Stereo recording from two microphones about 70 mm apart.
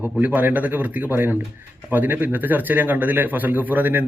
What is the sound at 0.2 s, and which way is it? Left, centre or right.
Speech, right.